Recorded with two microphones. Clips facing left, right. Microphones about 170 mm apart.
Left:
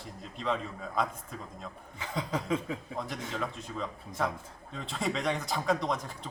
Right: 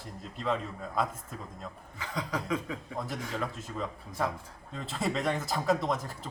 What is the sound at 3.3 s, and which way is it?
A man's voice, 5° right (ahead or behind).